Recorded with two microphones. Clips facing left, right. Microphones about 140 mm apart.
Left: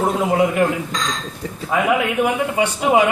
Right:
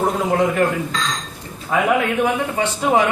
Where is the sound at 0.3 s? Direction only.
10° left (ahead or behind).